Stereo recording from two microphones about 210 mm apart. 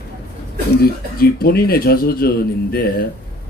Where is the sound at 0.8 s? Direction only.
45° left (ahead or behind).